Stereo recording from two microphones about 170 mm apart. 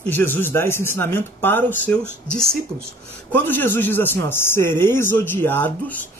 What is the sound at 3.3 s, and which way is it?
A man's voice, 10° left (ahead or behind).